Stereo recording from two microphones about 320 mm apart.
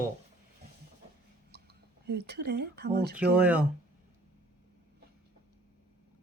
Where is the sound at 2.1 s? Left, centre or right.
Right.